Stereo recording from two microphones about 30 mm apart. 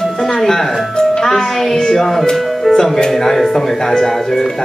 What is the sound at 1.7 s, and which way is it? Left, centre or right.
Music, centre.